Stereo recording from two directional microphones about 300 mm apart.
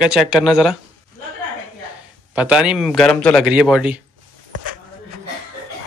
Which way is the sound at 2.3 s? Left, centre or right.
Centre.